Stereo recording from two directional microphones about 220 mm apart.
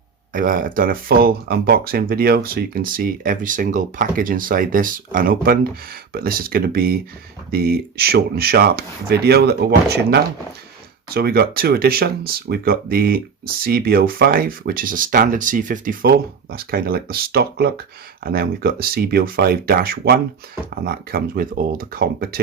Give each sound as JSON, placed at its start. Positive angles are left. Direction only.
{"t": 0.3, "sound": "speech", "side_deg": -40}